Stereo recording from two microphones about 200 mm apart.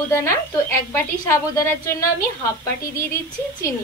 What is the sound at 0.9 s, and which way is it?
Speech, 15° left (ahead or behind).